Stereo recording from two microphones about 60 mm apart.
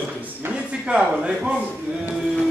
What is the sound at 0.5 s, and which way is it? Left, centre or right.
A man's voice, centre.